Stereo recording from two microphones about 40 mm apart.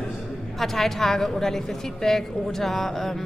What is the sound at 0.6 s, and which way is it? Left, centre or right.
A woman's voice, centre.